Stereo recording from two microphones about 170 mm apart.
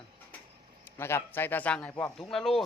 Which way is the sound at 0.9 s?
15° left (ahead or behind).